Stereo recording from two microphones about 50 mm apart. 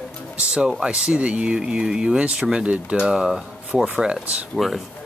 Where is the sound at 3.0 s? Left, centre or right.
Centre.